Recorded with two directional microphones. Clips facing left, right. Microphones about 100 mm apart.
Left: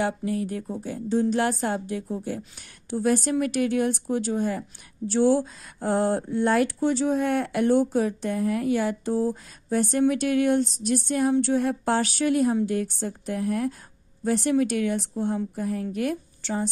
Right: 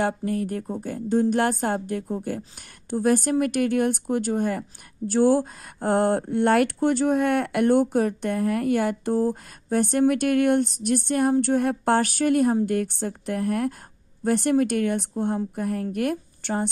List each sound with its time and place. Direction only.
0.0 s a woman's voice: 45° right (ahead or behind)